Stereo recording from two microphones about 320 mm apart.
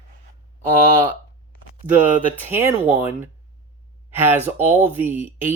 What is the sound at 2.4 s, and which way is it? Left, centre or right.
Speech, centre.